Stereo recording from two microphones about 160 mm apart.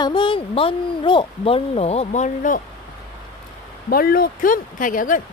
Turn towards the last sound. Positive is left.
turn(degrees=55)  # may be behind; listen again after turning